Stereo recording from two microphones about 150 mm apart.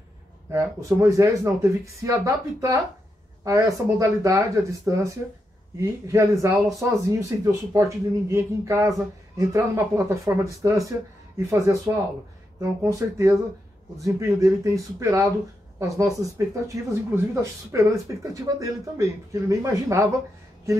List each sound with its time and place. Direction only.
0.5 s speech: 20° right (ahead or behind)